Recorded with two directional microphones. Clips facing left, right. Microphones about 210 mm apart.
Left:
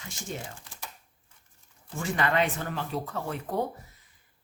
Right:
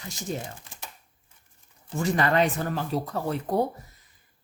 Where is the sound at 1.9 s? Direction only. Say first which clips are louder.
Right 4 dB; 40° right (ahead or behind).